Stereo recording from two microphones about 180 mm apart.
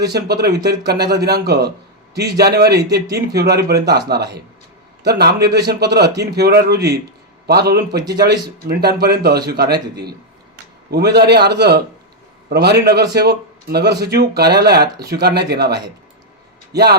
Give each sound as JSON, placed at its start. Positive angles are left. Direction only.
{"t": 0.0, "sound": "a man's voice", "side_deg": -65}
{"t": 7.9, "sound": "speech", "side_deg": -20}
{"t": 8.2, "sound": "speech", "side_deg": -60}